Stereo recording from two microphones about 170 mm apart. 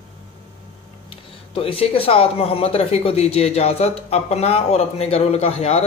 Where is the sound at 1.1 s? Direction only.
35° left (ahead or behind).